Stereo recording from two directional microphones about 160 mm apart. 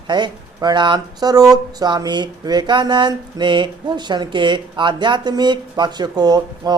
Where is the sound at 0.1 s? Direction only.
25° right (ahead or behind).